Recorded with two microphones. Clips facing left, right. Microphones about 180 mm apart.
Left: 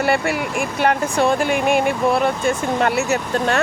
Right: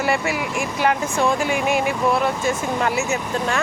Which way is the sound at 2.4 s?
65° left (ahead or behind).